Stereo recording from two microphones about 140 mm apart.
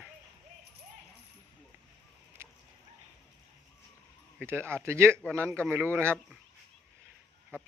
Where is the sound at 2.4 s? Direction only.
15° right (ahead or behind).